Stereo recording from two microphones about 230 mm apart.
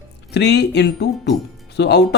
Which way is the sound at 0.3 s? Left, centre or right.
Left.